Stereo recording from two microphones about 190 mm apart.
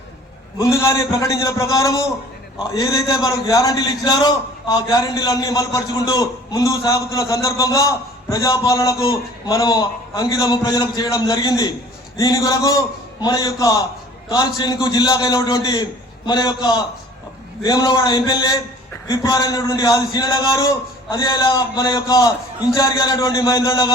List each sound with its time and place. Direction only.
0.6 s a man's voice: 15° left (ahead or behind)